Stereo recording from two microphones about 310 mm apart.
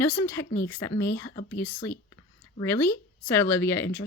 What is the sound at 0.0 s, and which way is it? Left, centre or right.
Speech, centre.